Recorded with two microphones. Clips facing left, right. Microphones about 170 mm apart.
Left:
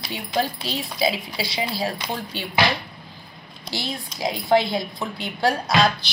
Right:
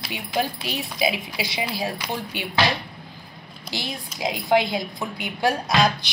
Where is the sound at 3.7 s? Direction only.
15° right (ahead or behind).